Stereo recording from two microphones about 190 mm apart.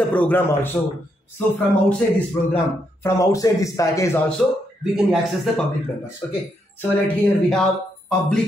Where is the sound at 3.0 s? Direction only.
15° left (ahead or behind).